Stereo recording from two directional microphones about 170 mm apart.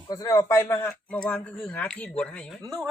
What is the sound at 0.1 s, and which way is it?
Speech, 15° left (ahead or behind).